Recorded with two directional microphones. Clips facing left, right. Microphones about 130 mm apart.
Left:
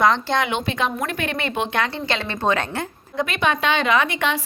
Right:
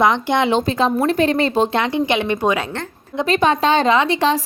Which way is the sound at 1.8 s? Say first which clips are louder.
Right 6 dB; 20° right (ahead or behind).